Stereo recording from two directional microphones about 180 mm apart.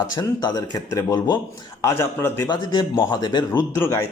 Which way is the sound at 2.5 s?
25° left (ahead or behind).